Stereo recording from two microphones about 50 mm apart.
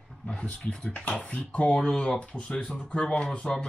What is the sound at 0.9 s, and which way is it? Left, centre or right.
Speech, left.